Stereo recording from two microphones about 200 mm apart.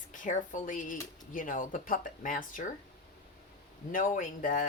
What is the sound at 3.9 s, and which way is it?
Speech, 40° left (ahead or behind).